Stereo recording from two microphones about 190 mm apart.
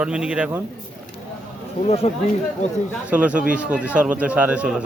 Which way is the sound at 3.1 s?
5° right (ahead or behind).